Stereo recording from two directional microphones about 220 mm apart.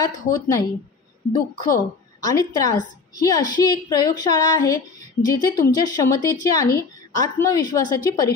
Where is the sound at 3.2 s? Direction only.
15° left (ahead or behind).